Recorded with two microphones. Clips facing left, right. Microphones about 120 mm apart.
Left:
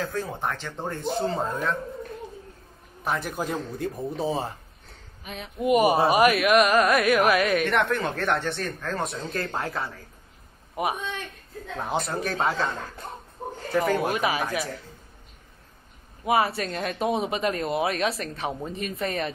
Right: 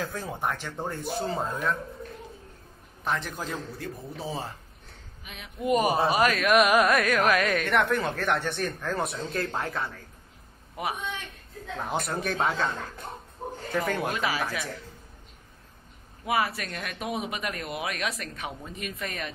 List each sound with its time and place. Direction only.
0.0 s speech: 15° right (ahead or behind)
3.0 s a man's voice: 10° left (ahead or behind); by 4.5 s 25° left (ahead or behind)
5.2 s a woman's voice: 40° left (ahead or behind)
5.6 s a man's voice: 15° left (ahead or behind)
6.8 s a man's voice: centre (ahead or behind)
8.4 s speech: 15° right (ahead or behind)
9.0 s speech: centre (ahead or behind)
10.8 s speech: 20° left (ahead or behind)
11.7 s speech: centre (ahead or behind)
13.4 s dog: 10° left (ahead or behind)
13.8 s speech: 5° left (ahead or behind)
14.1 s speech: 20° left (ahead or behind)
16.3 s speech: 25° left (ahead or behind)